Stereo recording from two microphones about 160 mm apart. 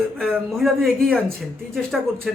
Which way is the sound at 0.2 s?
5° right (ahead or behind).